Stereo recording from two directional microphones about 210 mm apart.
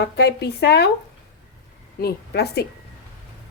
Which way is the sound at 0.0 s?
50° left (ahead or behind).